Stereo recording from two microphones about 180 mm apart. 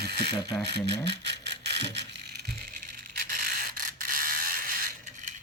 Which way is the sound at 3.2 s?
45° right (ahead or behind).